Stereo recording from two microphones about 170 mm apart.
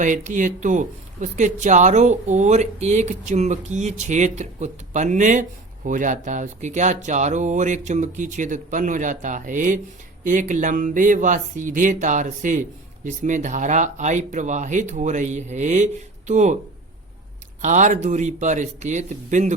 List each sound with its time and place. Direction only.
0.0 s speech: 50° right (ahead or behind)
17.6 s speech: 45° right (ahead or behind)